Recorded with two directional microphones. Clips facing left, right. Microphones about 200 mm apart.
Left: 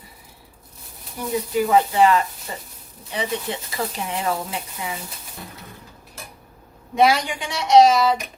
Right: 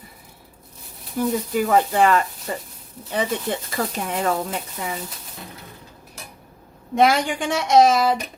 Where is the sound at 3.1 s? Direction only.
50° right (ahead or behind).